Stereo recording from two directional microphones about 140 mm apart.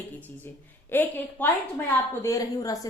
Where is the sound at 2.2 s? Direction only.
25° left (ahead or behind).